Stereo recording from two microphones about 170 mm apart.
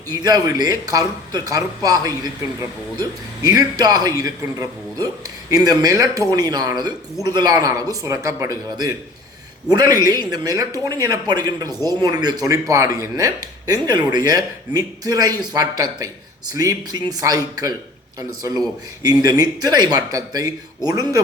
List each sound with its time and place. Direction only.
0.1 s a man's voice: 20° right (ahead or behind)